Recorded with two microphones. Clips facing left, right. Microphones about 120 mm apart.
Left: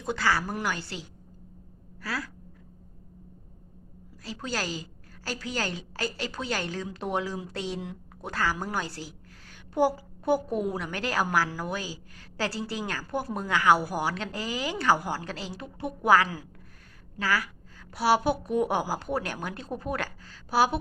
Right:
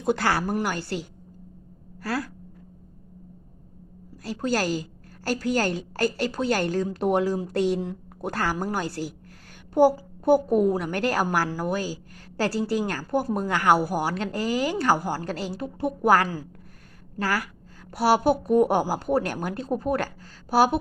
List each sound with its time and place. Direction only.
0.1 s a woman's voice: 60° right (ahead or behind)
0.5 s a woman's voice: 45° right (ahead or behind)
4.2 s a woman's voice: 45° right (ahead or behind)
11.7 s a woman's voice: 45° right (ahead or behind)